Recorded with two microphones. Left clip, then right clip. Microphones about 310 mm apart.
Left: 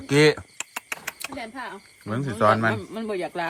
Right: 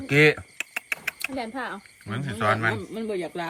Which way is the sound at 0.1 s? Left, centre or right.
Centre.